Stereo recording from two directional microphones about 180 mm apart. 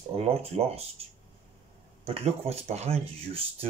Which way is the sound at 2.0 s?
35° right (ahead or behind).